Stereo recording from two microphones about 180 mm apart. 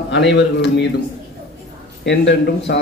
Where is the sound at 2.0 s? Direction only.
80° left.